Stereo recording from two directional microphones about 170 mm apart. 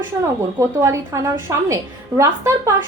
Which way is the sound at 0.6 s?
20° right (ahead or behind).